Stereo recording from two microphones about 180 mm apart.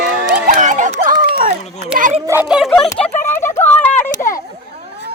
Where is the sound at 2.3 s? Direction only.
10° right (ahead or behind).